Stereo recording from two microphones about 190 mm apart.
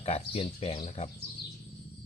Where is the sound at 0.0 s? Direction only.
30° left (ahead or behind).